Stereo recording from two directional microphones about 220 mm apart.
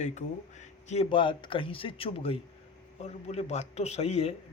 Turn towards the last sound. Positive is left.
turn(degrees=30)  # may be behind; listen again after turning